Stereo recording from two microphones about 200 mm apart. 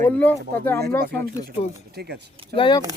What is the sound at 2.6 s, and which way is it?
Speech, 25° left (ahead or behind).